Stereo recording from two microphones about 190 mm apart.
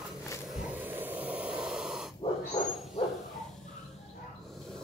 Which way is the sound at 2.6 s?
35° left (ahead or behind).